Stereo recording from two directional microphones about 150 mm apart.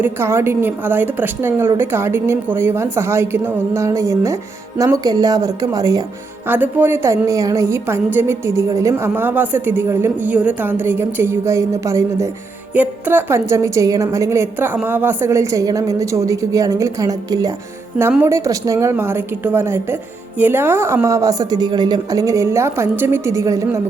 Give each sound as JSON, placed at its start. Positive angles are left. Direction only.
{"t": 0.0, "sound": "a woman's voice", "side_deg": -15}
{"t": 6.5, "sound": "a woman's voice", "side_deg": -15}